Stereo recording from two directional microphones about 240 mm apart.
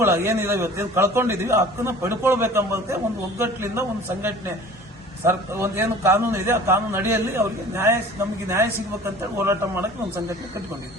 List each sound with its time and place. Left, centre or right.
0.0 s a man's voice: centre